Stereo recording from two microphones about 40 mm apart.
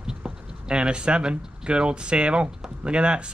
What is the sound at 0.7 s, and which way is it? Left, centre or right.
Speech, right.